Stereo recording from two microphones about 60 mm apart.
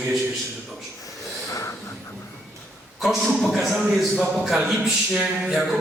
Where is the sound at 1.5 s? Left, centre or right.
Left.